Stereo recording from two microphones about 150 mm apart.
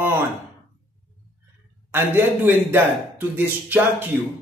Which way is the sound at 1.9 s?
15° right (ahead or behind).